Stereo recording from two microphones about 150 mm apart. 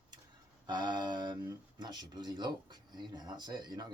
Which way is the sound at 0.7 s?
30° right (ahead or behind).